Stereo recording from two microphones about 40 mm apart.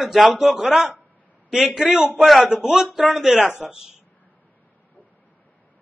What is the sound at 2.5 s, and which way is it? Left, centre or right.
A man's voice, right.